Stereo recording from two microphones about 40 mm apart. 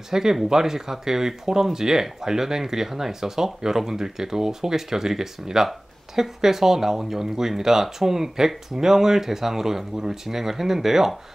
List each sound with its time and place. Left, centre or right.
0.1 s speech: centre